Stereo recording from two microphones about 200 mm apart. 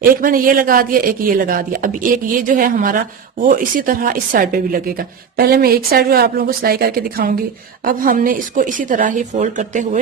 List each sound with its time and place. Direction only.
0.2 s speech: 45° right (ahead or behind)